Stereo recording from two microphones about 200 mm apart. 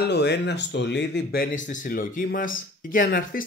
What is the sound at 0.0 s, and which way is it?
Speech, 55° left (ahead or behind).